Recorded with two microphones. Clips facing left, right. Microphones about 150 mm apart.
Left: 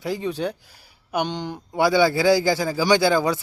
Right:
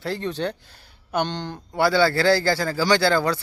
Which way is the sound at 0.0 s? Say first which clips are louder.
Left 1 dB; 10° left (ahead or behind).